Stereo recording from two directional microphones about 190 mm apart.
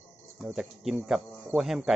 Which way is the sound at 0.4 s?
5° right (ahead or behind).